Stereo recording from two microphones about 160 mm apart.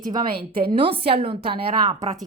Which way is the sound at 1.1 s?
35° right (ahead or behind).